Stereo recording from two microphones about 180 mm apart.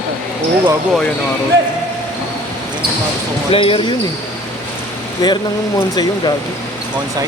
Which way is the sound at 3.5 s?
30° left (ahead or behind).